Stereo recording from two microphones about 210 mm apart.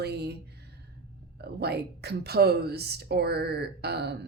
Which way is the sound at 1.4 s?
50° right (ahead or behind).